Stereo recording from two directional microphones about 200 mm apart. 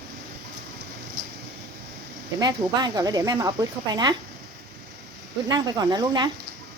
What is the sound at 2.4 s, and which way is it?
Speech, 20° right (ahead or behind).